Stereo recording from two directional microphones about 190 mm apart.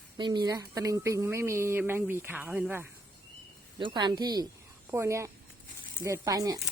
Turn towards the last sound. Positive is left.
turn(degrees=-20)  # may be behind; listen again after turning